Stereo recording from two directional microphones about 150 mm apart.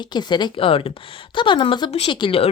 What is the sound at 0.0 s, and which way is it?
A woman's voice, 30° left (ahead or behind).